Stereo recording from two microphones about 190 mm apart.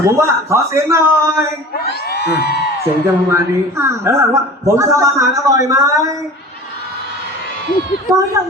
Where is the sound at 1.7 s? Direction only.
55° left (ahead or behind).